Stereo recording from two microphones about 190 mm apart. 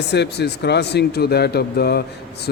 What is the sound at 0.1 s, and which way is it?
A man's voice, 60° left (ahead or behind).